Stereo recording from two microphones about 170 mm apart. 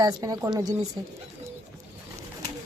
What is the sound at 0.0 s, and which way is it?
Speech, 20° right (ahead or behind).